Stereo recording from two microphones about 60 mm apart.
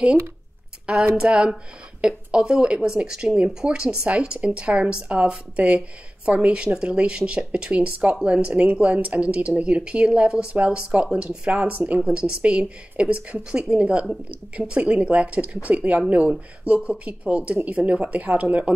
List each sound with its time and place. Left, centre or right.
1.1 s a woman's voice: centre